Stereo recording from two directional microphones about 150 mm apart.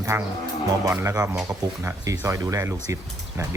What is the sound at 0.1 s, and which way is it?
Speech, 15° right (ahead or behind).